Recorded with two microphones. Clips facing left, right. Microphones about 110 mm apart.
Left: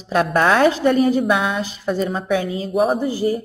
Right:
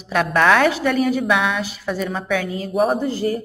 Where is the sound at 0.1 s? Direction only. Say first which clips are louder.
Even; 30° left (ahead or behind).